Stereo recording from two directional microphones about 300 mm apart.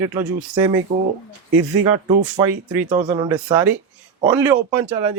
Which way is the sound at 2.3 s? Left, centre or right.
Centre.